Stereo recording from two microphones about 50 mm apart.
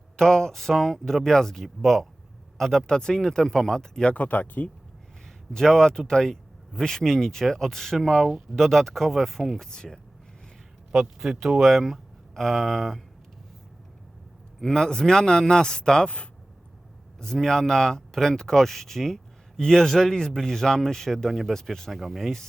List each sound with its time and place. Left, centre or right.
0.2 s speech: centre
2.8 s speech: centre
4.1 s speech: left
5.5 s speech: centre
11.2 s speech: centre
14.6 s speech: centre
17.2 s speech: centre